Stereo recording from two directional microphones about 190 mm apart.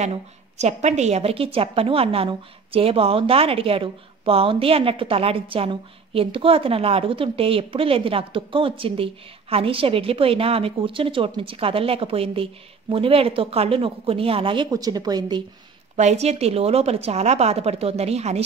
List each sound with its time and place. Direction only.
0.0 s a woman's voice: 35° right (ahead or behind)
16.0 s speech: 35° right (ahead or behind)